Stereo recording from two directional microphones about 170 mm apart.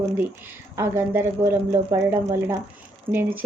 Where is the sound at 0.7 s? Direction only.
15° right (ahead or behind).